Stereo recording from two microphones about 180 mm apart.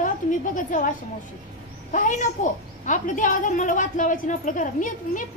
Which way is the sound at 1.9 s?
45° left (ahead or behind).